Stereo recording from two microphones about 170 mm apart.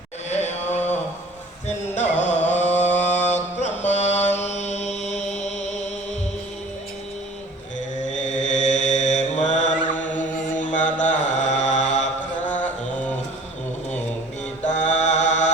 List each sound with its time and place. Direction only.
1.6 s music: 45° left (ahead or behind)
3.1 s chant: 45° left (ahead or behind)
8.1 s mantra: 45° left (ahead or behind)
12.6 s mantra: 5° left (ahead or behind)
14.6 s mantra: 45° left (ahead or behind)